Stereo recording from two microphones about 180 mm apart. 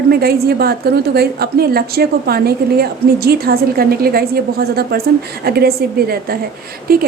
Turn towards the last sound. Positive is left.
turn(degrees=-55)  # may be behind; listen again after turning